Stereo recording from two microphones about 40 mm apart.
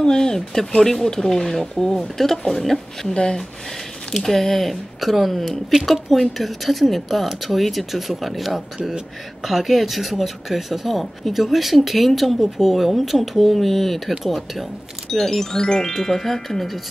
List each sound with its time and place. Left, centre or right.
0.0 s speech: centre
15.0 s speech: centre
15.6 s speech: centre
15.9 s speech: centre